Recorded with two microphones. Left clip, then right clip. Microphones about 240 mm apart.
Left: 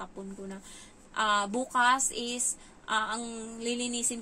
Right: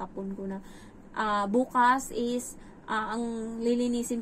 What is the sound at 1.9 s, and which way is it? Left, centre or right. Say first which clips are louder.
A woman's voice: right 1 dB; centre.